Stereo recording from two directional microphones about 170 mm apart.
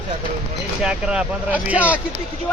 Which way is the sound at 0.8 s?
5° right (ahead or behind).